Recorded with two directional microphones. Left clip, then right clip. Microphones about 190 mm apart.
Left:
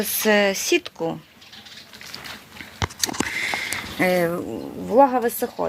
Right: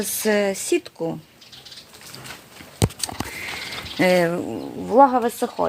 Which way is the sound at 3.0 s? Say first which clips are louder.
Left 6 dB; 5° right (ahead or behind).